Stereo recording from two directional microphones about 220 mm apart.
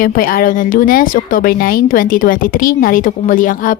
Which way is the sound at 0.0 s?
40° left (ahead or behind).